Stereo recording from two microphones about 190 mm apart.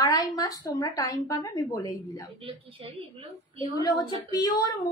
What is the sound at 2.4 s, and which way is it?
A woman's voice, 30° right (ahead or behind).